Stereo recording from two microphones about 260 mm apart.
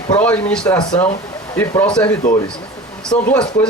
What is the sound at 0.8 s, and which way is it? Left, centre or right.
Speech, centre.